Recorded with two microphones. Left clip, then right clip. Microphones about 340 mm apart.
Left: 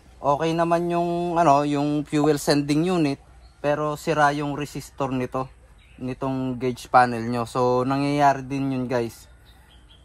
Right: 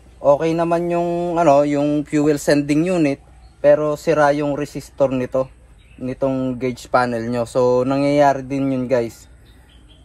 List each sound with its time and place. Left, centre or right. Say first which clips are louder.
0.2 s a man's voice: right 6 dB; centre
4.6 s speech: right 7 dB; left
5.1 s a man's voice: right 7 dB; centre